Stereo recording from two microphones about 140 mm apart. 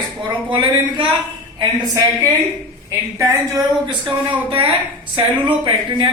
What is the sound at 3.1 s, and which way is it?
Speech, 25° right (ahead or behind).